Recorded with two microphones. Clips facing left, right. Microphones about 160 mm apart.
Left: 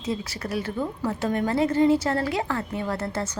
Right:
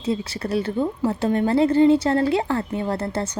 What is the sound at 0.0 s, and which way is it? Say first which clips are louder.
Speech: right 5 dB; 30° right (ahead or behind).